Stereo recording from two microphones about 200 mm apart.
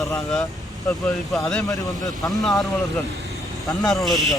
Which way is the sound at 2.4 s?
Centre (ahead or behind).